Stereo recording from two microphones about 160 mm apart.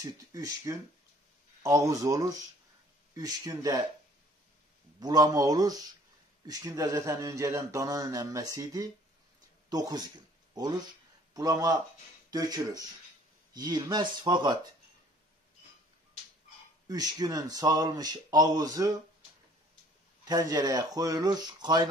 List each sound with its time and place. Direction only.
0.0 s speech: 20° right (ahead or behind)
5.0 s speech: 25° right (ahead or behind)
16.8 s speech: 25° right (ahead or behind)
20.2 s speech: 25° right (ahead or behind)